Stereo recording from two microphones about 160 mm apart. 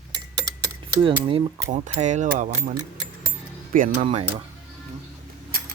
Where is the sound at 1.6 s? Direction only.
45° right (ahead or behind).